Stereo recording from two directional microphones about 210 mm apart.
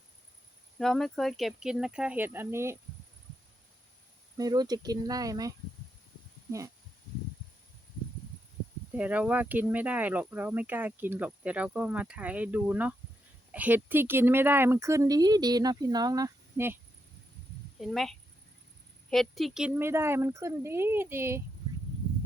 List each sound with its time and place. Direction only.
0.8 s speech: centre (ahead or behind)
4.4 s speech: 20° right (ahead or behind)
8.9 s speech: 5° right (ahead or behind)
17.7 s speech: centre (ahead or behind)